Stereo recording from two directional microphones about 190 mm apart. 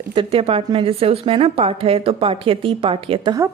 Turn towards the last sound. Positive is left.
turn(degrees=-20)  # may be behind; listen again after turning